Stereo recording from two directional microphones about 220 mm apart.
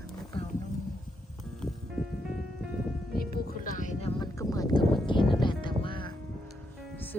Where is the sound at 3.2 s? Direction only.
40° left (ahead or behind).